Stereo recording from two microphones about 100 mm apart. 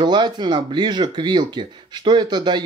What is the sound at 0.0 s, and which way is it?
Speech, 50° right (ahead or behind).